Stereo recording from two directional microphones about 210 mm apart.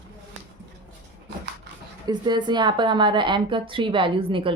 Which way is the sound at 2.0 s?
20° right (ahead or behind).